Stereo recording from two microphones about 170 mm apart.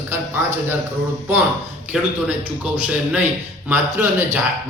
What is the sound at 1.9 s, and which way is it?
Speech, 5° right (ahead or behind).